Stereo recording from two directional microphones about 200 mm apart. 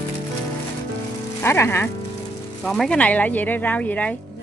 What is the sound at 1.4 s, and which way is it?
Speech, 10° left (ahead or behind).